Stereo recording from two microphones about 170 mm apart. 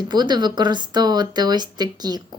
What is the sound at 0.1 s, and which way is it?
Speech, 25° right (ahead or behind).